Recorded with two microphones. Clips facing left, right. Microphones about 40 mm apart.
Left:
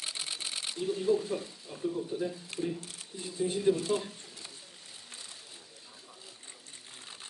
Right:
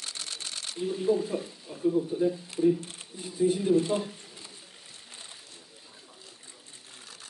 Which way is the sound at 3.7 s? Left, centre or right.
Right.